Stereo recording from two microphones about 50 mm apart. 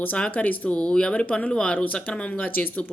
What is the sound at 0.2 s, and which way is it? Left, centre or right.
A woman's voice, left.